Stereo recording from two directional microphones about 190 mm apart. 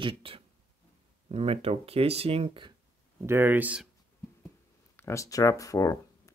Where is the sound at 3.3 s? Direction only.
10° right (ahead or behind).